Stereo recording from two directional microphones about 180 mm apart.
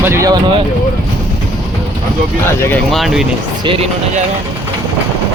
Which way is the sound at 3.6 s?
30° right (ahead or behind).